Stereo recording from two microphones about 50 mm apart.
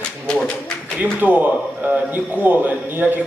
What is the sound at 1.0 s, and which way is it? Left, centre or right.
A man's voice, right.